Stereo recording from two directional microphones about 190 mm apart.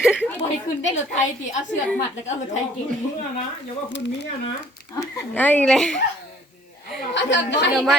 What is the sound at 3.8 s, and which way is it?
Speech, 70° left (ahead or behind).